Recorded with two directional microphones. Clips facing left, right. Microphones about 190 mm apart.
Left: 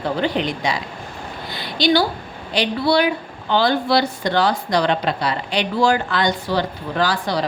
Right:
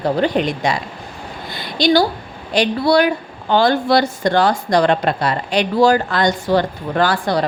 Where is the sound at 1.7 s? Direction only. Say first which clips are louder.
Right 3 dB; 45° right (ahead or behind).